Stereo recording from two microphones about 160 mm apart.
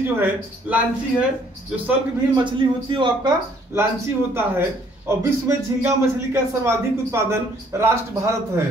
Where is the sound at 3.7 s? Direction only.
15° right (ahead or behind).